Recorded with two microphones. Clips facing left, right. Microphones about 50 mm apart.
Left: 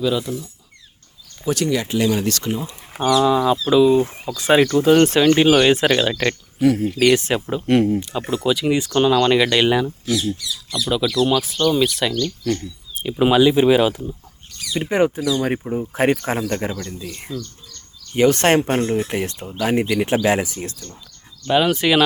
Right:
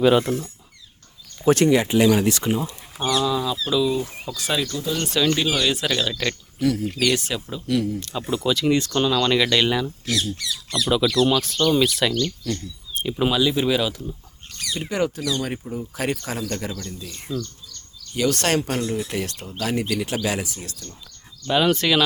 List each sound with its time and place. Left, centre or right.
0.0 s speech: right
1.5 s speech: right
1.7 s speech: right
2.9 s speech: left
5.2 s speech: left
7.9 s speech: centre
10.3 s speech: right
11.3 s speech: centre
12.5 s speech: left
13.0 s speech: centre
13.2 s speech: left
17.3 s speech: centre
18.1 s speech: left
21.4 s speech: centre